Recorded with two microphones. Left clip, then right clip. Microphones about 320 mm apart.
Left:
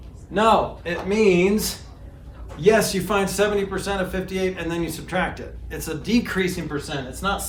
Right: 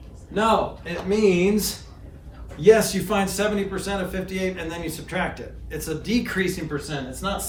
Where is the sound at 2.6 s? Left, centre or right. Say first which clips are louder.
Right 1 dB; centre.